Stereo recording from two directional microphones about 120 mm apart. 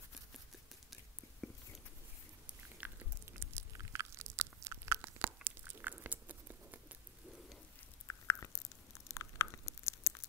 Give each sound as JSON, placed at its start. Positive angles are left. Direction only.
{"t": 1.4, "sound": "a sound", "side_deg": 5}
{"t": 2.8, "sound": "biting", "side_deg": -20}
{"t": 8.1, "sound": "biting", "side_deg": 25}